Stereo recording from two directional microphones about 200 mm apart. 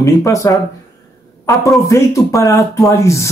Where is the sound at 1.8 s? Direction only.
15° left (ahead or behind).